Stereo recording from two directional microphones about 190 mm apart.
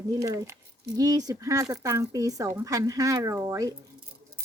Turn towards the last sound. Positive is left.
turn(degrees=-15)  # may be behind; listen again after turning